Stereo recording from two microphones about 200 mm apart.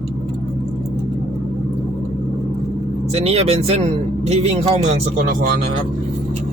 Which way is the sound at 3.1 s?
30° right (ahead or behind).